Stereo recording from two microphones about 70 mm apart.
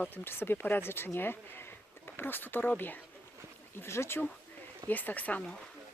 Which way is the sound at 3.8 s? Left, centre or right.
Left.